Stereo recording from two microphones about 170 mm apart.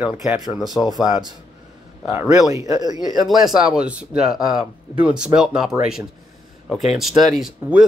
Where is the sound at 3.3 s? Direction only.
Centre (ahead or behind).